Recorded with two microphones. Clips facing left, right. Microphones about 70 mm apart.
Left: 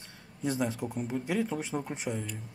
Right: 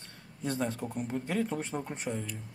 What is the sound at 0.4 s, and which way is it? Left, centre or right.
Speech, centre.